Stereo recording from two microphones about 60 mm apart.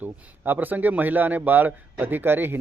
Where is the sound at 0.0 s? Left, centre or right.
Right.